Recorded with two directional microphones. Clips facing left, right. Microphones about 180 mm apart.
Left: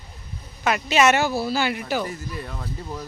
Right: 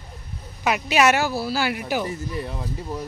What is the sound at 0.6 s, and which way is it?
Speech, 10° right (ahead or behind).